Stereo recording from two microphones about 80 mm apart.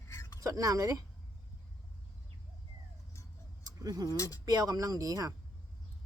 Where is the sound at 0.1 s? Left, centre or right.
Left.